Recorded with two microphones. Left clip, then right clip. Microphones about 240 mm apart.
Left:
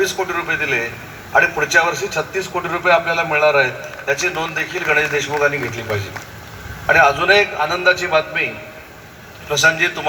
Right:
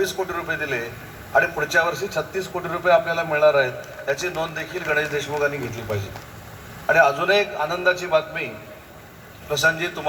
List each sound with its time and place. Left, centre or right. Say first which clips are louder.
0.0 s a man's voice: left 5 dB; right
9.5 s a man's voice: left 6 dB; right